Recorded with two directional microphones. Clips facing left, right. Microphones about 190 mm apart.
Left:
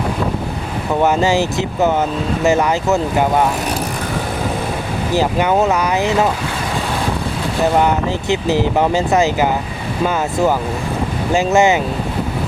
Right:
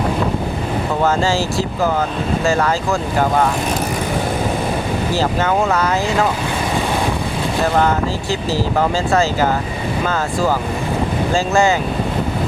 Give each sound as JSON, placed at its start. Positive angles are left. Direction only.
{"t": 1.0, "sound": "speech", "side_deg": 20}
{"t": 5.1, "sound": "speech", "side_deg": 15}
{"t": 7.8, "sound": "speech", "side_deg": 20}